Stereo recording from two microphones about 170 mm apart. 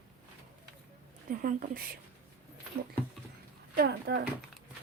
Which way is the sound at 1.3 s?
55° right (ahead or behind).